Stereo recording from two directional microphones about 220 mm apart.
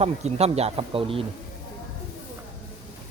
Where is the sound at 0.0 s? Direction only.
30° right (ahead or behind).